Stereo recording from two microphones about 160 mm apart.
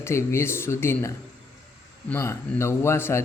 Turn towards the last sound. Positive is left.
turn(degrees=15)  # may be behind; listen again after turning